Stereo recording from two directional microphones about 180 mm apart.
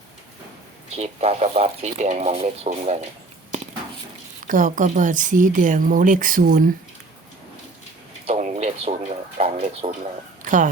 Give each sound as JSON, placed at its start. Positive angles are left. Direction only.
{"t": 0.9, "sound": "speech", "side_deg": -35}
{"t": 4.4, "sound": "speech", "side_deg": -45}
{"t": 8.3, "sound": "a sound", "side_deg": -35}